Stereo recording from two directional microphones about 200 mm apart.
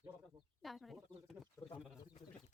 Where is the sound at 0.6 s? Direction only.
Centre (ahead or behind).